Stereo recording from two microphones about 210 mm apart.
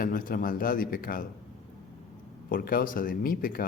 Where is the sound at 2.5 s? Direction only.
45° left (ahead or behind).